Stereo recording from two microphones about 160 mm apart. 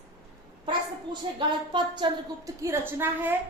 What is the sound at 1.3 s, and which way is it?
A woman's voice, 30° right (ahead or behind).